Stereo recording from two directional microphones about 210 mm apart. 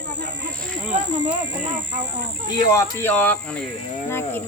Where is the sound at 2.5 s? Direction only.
15° left (ahead or behind).